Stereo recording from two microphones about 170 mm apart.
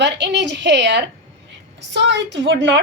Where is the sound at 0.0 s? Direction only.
90° right.